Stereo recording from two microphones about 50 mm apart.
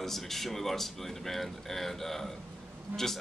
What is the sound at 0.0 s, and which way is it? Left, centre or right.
A man's voice, centre.